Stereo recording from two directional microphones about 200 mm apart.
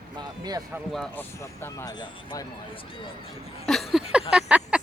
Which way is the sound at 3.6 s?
Centre (ahead or behind).